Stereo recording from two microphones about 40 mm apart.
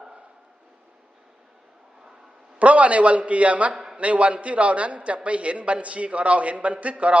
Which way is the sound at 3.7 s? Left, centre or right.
Centre.